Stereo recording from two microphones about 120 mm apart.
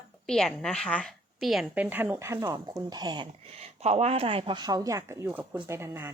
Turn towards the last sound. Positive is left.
turn(degrees=-20)  # may be behind; listen again after turning